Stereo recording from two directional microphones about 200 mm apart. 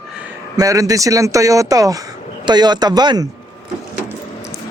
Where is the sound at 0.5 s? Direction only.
15° right (ahead or behind).